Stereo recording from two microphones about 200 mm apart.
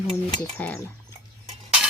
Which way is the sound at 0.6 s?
5° left (ahead or behind).